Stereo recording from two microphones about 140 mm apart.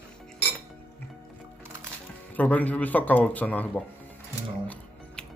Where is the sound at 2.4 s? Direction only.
10° left (ahead or behind).